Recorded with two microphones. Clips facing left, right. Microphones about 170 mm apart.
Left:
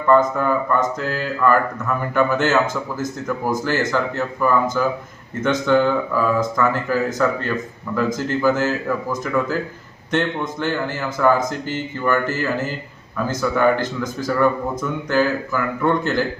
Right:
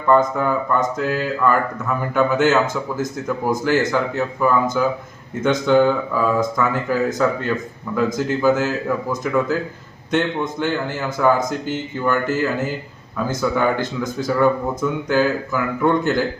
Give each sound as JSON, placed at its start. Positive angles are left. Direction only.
{"t": 0.1, "sound": "speech", "side_deg": -15}